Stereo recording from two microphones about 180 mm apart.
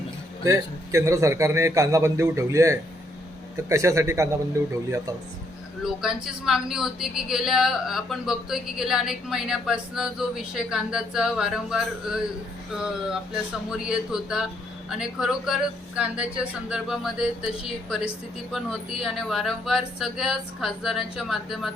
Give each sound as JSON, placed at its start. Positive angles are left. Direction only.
{"t": 0.4, "sound": "a man's voice", "side_deg": -15}
{"t": 5.8, "sound": "speech", "side_deg": -5}